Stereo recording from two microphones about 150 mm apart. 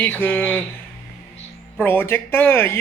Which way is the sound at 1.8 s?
15° left (ahead or behind).